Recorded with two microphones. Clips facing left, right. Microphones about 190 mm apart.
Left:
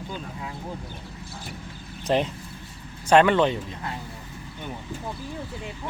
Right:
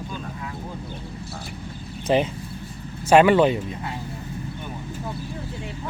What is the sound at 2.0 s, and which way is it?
Speech, centre (ahead or behind).